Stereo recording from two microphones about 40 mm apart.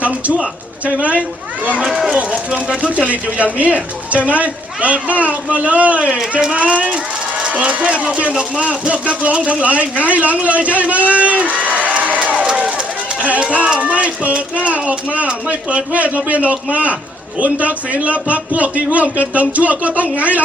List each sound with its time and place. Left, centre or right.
1.9 s speech: centre
2.1 s a man's voice: right
13.8 s a man's voice: right